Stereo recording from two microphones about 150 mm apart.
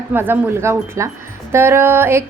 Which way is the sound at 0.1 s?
15° right (ahead or behind).